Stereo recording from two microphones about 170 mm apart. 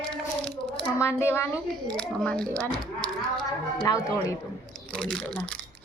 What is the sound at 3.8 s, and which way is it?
Child singing, 20° left (ahead or behind).